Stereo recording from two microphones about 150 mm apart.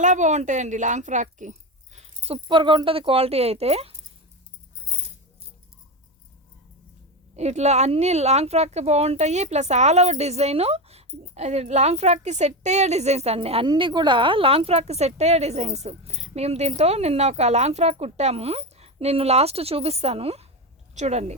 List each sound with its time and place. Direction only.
0.0 s a woman's voice: 55° right (ahead or behind)
7.3 s a woman's voice: 50° right (ahead or behind)